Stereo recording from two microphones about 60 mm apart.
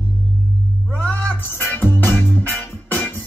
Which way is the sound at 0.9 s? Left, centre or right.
Left.